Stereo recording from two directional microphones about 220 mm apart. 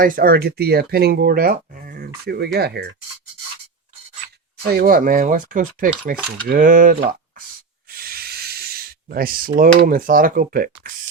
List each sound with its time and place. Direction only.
0.0 s speech: 40° right (ahead or behind)
4.7 s speech: 45° right (ahead or behind)
7.9 s hiss: 45° right (ahead or behind)
9.6 s speech: 40° right (ahead or behind)